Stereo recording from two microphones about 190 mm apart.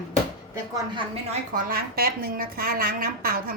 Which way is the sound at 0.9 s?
30° right (ahead or behind).